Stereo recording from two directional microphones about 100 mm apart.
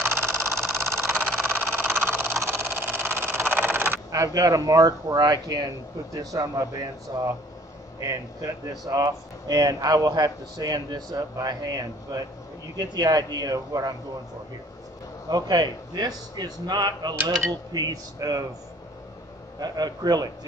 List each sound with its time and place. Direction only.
0.0 s vehicle: 20° right (ahead or behind)
2.4 s a sound: 20° right (ahead or behind)
4.1 s speech: 35° right (ahead or behind)
15.2 s speech: 45° right (ahead or behind)
19.6 s speech: 40° right (ahead or behind)